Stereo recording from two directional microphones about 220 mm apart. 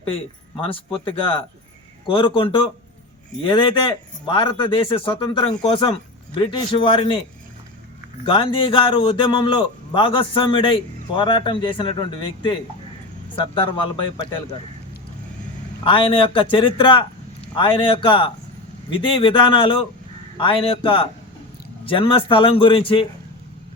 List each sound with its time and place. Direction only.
0.1 s a man's voice: 25° left (ahead or behind)
8.2 s a man's voice: 20° left (ahead or behind)
15.8 s a man's voice: 25° left (ahead or behind)